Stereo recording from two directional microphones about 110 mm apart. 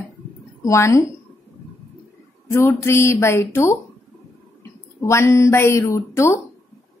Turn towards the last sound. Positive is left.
turn(degrees=25)  # may be behind; listen again after turning